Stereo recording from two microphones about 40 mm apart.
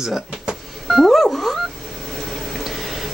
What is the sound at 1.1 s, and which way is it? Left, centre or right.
Music, centre.